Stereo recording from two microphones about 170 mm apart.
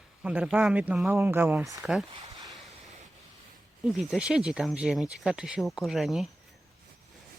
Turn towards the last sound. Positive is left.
turn(degrees=0)  # may be behind; listen again after turning